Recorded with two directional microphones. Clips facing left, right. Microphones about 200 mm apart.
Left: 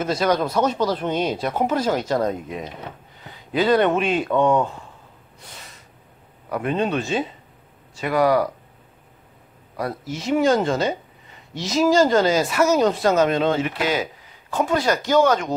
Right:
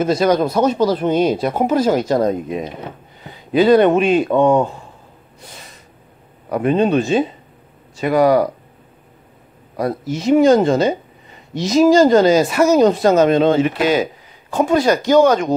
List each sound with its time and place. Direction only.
0.0 s speech: 15° right (ahead or behind)
4.3 s speech: 30° right (ahead or behind)
6.5 s speech: 20° right (ahead or behind)
9.8 s speech: 20° right (ahead or behind)